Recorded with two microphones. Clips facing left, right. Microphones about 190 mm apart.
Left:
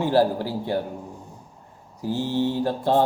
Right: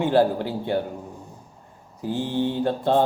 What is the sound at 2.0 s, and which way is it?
Mantra, 15° right (ahead or behind).